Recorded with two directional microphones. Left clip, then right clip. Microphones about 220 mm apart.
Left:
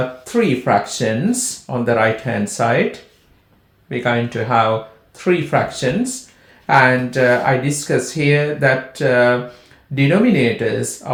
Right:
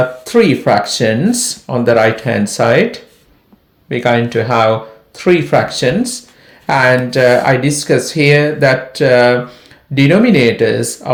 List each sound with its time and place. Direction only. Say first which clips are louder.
0.3 s speech: right 5 dB; 40° right (ahead or behind)
3.8 s speech: right 6 dB; 40° right (ahead or behind)